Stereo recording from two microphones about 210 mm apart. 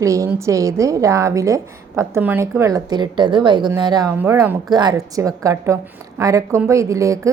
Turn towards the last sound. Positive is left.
turn(degrees=-15)  # may be behind; listen again after turning